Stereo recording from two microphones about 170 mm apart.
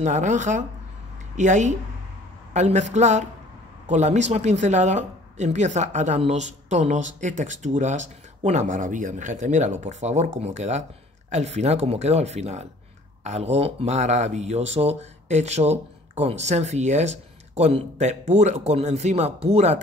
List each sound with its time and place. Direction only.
0.0 s speech: 45° right (ahead or behind)